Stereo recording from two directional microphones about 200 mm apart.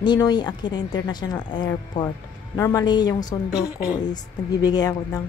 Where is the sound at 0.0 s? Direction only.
20° left (ahead or behind).